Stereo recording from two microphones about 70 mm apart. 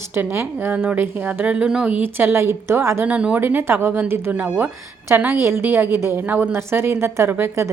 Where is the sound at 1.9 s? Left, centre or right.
Right.